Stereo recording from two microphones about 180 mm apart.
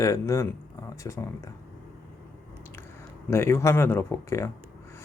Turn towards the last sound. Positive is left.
turn(degrees=15)  # may be behind; listen again after turning